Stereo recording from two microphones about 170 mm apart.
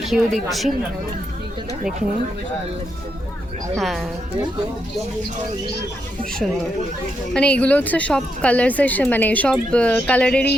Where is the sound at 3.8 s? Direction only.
Centre (ahead or behind).